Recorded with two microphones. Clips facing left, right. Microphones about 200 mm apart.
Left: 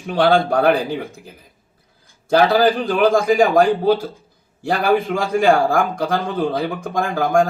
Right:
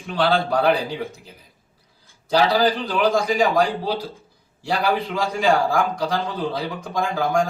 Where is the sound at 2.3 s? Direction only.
50° left (ahead or behind).